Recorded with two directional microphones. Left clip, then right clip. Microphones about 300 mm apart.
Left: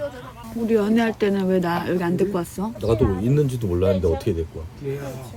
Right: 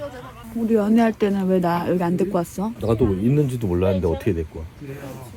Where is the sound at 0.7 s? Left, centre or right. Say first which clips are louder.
Right 1 dB; centre.